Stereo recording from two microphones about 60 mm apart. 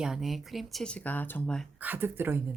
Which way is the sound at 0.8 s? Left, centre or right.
Left.